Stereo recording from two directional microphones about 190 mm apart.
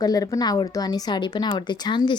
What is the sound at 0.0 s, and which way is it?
A woman's voice, 20° left (ahead or behind).